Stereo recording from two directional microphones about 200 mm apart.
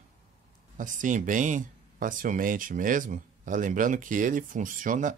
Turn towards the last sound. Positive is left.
turn(degrees=-40)  # may be behind; listen again after turning